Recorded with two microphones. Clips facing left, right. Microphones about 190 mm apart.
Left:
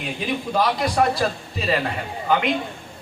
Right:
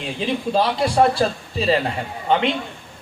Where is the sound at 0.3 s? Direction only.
30° right (ahead or behind).